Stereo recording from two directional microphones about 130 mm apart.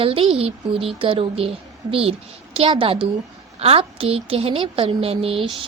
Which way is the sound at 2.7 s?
40° right (ahead or behind).